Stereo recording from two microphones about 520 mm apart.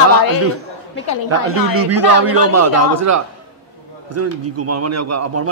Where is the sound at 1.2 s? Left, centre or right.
Right.